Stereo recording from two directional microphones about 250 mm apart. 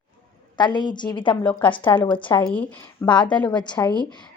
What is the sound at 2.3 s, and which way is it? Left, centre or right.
Speech, centre.